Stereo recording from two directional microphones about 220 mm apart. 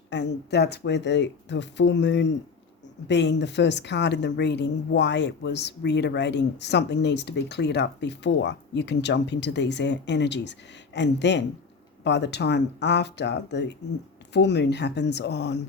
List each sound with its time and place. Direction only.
0.1 s a woman's voice: 50° left (ahead or behind)